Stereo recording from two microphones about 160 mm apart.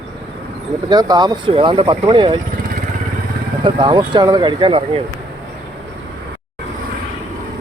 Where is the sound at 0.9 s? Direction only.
25° right (ahead or behind).